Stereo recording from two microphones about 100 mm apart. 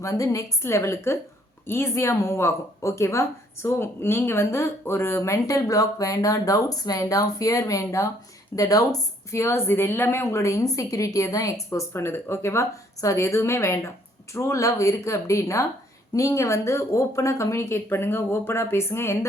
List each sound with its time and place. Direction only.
0.0 s speech: 35° left (ahead or behind)